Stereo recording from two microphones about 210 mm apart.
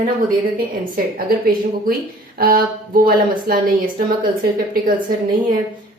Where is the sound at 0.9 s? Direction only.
45° right (ahead or behind).